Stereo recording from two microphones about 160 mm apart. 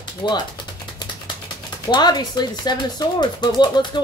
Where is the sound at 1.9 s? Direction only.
25° left (ahead or behind).